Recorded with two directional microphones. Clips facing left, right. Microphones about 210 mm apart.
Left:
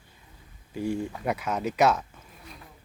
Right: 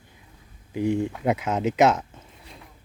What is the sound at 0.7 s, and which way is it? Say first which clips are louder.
Speech: right 5 dB; 20° right (ahead or behind).